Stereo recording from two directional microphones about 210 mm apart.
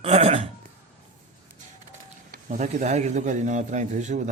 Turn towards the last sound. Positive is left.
turn(degrees=-35)  # may be behind; listen again after turning